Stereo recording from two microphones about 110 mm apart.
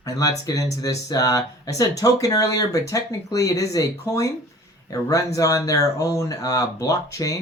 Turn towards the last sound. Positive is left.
turn(degrees=30)  # may be behind; listen again after turning